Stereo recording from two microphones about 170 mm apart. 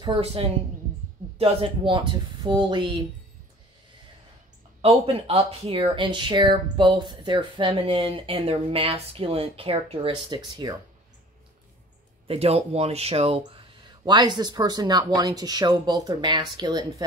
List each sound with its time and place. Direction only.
0.0 s speech: 30° right (ahead or behind)
4.8 s speech: 35° right (ahead or behind)
12.3 s speech: 35° right (ahead or behind)